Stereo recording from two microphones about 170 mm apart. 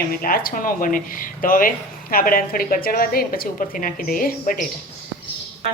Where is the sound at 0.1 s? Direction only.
60° left (ahead or behind).